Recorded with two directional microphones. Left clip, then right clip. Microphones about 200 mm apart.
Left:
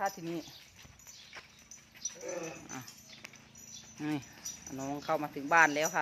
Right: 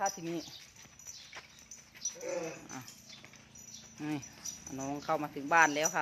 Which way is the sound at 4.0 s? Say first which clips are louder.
Left 2 dB; 15° left (ahead or behind).